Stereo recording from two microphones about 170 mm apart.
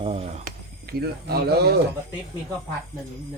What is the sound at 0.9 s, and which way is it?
Speech, 65° right (ahead or behind).